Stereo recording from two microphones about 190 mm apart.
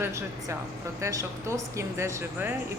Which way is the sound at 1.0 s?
15° right (ahead or behind).